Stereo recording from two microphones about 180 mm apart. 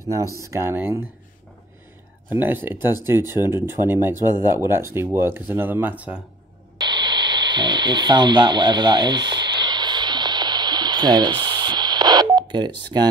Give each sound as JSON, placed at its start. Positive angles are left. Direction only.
{"t": 0.4, "sound": "speech", "side_deg": -15}
{"t": 2.3, "sound": "speech", "side_deg": -10}
{"t": 6.8, "sound": "a sound", "side_deg": -25}